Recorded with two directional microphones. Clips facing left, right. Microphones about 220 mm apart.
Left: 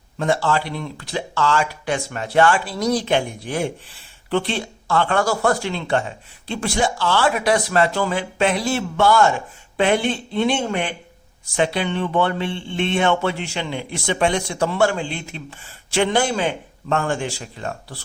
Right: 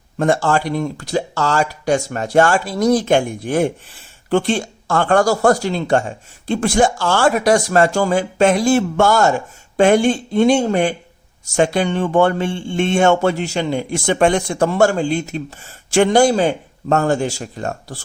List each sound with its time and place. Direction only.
0.2 s speech: 50° right (ahead or behind)